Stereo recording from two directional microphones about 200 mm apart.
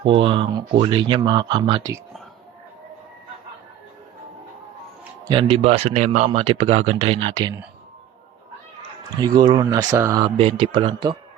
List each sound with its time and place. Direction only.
0.0 s speech: 25° right (ahead or behind)
5.3 s speech: 25° right (ahead or behind)
9.2 s speech: 20° right (ahead or behind)